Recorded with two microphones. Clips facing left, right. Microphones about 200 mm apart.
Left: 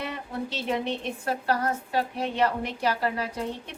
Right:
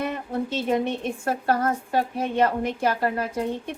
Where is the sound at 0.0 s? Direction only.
50° right (ahead or behind).